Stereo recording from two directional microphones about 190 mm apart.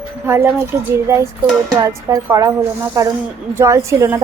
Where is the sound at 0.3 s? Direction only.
15° right (ahead or behind).